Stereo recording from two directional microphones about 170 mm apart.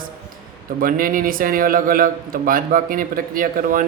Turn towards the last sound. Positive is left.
turn(degrees=-55)  # may be behind; listen again after turning